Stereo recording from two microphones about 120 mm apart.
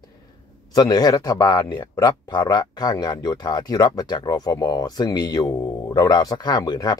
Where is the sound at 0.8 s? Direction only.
35° left (ahead or behind).